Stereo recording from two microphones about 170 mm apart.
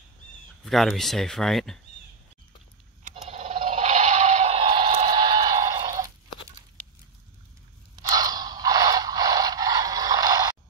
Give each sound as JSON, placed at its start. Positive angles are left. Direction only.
{"t": 0.7, "sound": "speech", "side_deg": 0}
{"t": 3.0, "sound": "scrape", "side_deg": -35}
{"t": 4.9, "sound": "a sound", "side_deg": -30}
{"t": 7.9, "sound": "scrape", "side_deg": -20}